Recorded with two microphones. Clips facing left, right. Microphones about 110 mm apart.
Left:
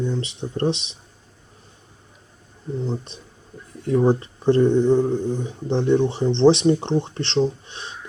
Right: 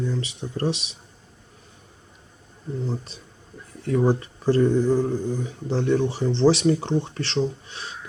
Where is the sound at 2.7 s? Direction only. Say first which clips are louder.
Left 2 dB; centre (ahead or behind).